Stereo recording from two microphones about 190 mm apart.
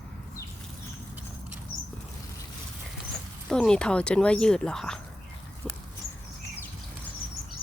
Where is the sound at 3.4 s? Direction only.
5° left (ahead or behind).